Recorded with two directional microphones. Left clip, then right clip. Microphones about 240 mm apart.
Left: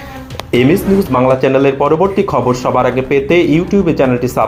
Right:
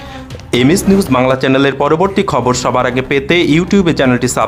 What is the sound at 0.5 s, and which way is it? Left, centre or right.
Speech, centre.